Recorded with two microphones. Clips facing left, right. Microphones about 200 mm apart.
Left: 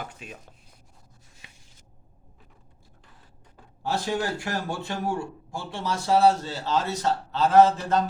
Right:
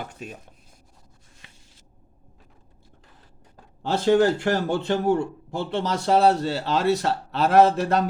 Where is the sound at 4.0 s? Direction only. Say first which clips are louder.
Right 14 dB; 60° right (ahead or behind).